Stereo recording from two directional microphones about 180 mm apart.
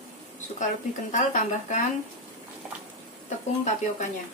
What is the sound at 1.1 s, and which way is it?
Speech, 45° left (ahead or behind).